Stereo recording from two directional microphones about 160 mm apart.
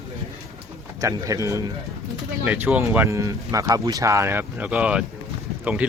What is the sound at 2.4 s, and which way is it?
Speech, 10° right (ahead or behind).